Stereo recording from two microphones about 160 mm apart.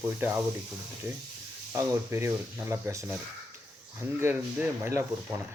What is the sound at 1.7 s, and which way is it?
Speech, 15° right (ahead or behind).